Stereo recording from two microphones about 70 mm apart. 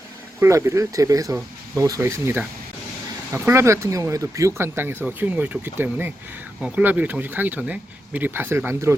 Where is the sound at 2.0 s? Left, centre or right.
Right.